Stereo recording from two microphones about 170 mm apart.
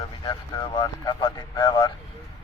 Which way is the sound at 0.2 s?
25° left (ahead or behind).